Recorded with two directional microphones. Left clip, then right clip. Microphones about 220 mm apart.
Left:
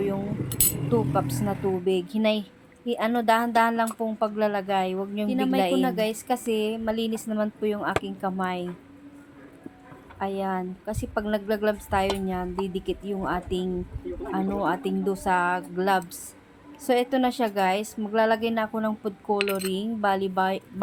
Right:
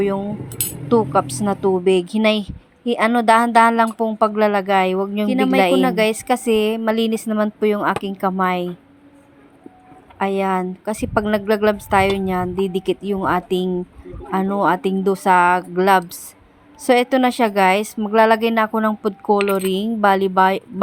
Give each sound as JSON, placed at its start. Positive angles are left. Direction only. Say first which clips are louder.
{"t": 0.9, "sound": "speech", "louder": "right 10 dB", "side_deg": -25}
{"t": 10.2, "sound": "speech", "louder": "right 9 dB", "side_deg": -30}